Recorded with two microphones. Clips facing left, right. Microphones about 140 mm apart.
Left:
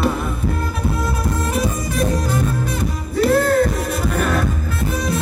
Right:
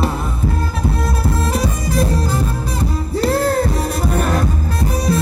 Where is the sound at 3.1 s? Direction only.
35° right (ahead or behind).